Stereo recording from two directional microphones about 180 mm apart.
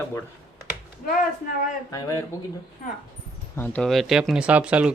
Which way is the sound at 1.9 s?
20° left (ahead or behind).